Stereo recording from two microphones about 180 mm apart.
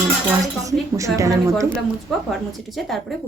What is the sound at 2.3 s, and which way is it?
Speech, centre (ahead or behind).